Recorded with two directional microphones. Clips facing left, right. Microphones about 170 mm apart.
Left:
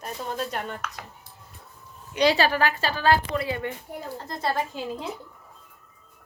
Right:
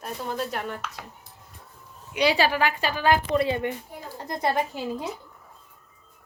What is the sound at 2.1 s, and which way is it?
A woman's voice, 10° right (ahead or behind).